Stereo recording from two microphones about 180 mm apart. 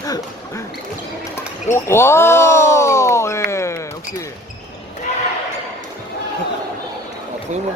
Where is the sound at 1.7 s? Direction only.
15° left (ahead or behind).